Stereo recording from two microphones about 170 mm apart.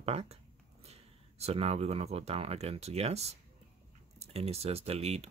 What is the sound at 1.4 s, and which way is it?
Speech, 40° right (ahead or behind).